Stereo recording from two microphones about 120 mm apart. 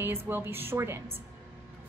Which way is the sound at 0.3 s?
20° right (ahead or behind).